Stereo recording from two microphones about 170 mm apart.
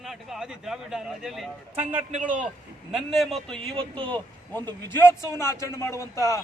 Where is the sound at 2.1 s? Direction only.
50° right (ahead or behind).